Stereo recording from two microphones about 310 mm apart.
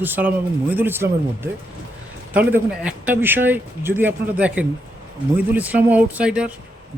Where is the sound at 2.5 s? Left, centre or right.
Centre.